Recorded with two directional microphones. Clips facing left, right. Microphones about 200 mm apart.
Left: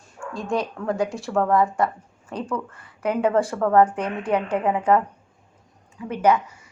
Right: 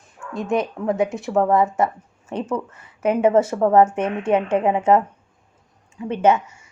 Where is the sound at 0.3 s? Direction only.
20° right (ahead or behind).